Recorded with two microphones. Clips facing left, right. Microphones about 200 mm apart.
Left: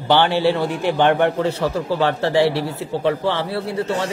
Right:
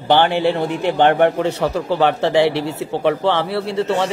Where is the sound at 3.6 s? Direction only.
25° right (ahead or behind).